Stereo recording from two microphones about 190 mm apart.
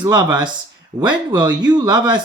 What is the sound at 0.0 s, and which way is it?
Speech, 20° right (ahead or behind).